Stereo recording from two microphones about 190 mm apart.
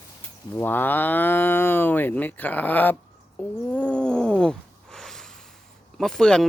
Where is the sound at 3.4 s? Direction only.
5° left (ahead or behind).